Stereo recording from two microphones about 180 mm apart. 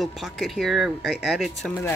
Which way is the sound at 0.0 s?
Centre (ahead or behind).